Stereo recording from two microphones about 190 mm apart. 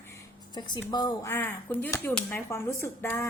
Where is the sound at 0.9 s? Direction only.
20° left (ahead or behind).